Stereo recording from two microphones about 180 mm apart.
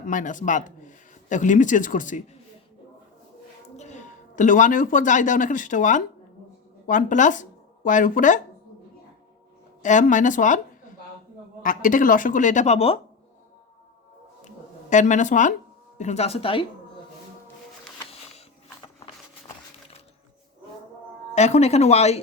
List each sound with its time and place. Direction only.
0.1 s speech: 45° left (ahead or behind)
3.8 s a woman's voice: 40° left (ahead or behind)
9.8 s a woman's voice: 45° left (ahead or behind)
14.4 s a sound: 45° left (ahead or behind)
16.0 s speech: 40° left (ahead or behind)
21.3 s speech: 40° left (ahead or behind)